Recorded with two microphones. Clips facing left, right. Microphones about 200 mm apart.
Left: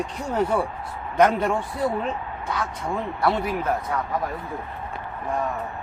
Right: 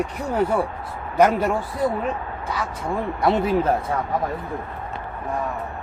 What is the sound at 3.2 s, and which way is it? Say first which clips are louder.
Speech: right 5 dB; 25° right (ahead or behind).